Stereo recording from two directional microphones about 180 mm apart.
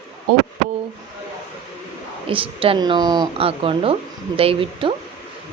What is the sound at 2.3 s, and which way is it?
A woman's voice, 30° right (ahead or behind).